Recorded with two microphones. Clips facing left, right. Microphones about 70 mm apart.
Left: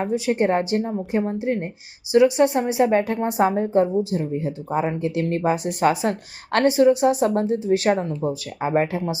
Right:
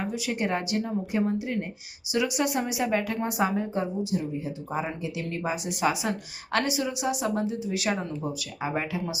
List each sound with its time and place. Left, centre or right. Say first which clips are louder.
0.0 s speech: left 9 dB; left
4.3 s speech: left 7 dB; left